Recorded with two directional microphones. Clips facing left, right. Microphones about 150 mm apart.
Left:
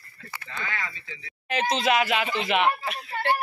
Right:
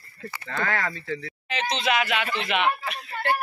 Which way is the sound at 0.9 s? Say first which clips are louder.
Right 13 dB; 45° right (ahead or behind).